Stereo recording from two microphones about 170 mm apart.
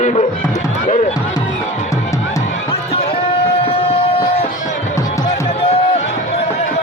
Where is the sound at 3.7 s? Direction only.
35° left (ahead or behind).